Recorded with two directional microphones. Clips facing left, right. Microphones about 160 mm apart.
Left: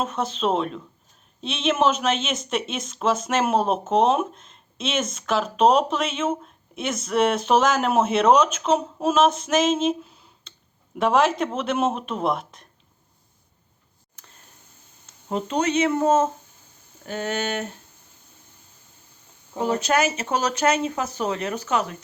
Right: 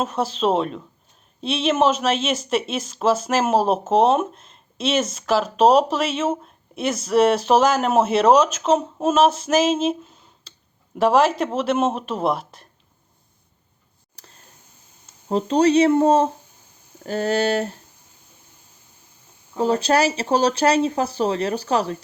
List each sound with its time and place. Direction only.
0.3 s speech: 5° right (ahead or behind)
14.2 s a sound: 35° right (ahead or behind)
15.3 s speech: 35° right (ahead or behind)
19.5 s speech: 30° right (ahead or behind)